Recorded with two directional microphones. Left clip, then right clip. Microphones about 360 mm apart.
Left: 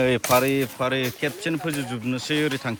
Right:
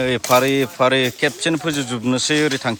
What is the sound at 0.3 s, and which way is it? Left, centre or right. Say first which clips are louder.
Speech: right 5 dB; centre.